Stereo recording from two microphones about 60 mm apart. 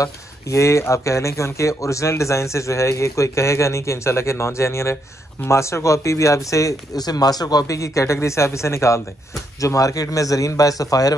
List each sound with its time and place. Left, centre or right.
0.0 s speech: left